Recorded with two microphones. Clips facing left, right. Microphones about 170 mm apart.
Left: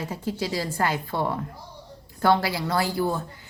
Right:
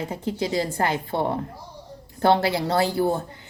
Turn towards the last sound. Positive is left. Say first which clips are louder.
# right 3 dB
turn(degrees=-25)  # may be behind; listen again after turning